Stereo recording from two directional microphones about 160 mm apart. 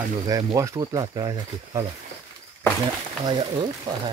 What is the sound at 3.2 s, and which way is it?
Speech, 30° right (ahead or behind).